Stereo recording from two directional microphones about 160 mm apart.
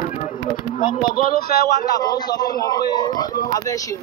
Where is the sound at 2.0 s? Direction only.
25° left (ahead or behind).